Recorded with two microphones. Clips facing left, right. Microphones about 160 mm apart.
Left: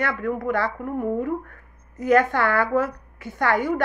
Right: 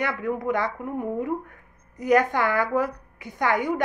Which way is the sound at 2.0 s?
15° right (ahead or behind).